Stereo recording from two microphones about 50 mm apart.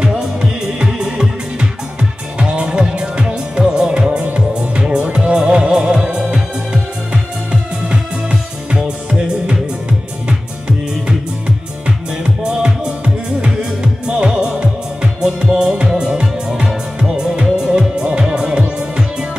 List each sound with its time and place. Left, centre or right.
0.4 s music: centre